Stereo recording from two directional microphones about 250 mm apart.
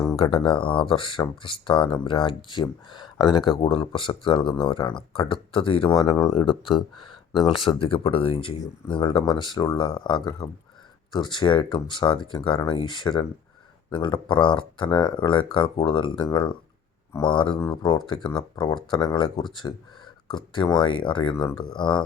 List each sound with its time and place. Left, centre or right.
0.0 s speech: centre